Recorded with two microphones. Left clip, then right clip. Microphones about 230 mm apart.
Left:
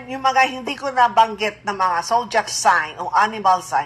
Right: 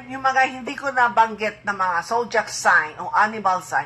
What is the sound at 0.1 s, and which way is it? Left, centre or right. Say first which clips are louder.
Speech: left 2 dB; left.